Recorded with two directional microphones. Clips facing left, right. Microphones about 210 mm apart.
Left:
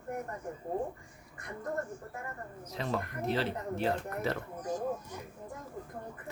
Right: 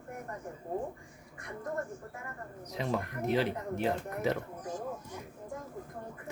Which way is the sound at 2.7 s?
15° right (ahead or behind).